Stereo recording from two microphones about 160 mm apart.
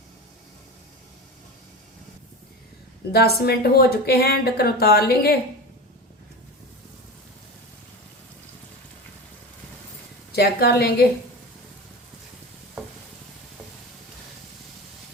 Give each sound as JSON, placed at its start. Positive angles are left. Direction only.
{"t": 3.1, "sound": "speech", "side_deg": 75}
{"t": 10.3, "sound": "a woman's voice", "side_deg": 80}